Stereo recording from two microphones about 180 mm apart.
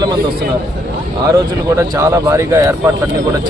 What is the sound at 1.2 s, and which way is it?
Speech, 20° right (ahead or behind).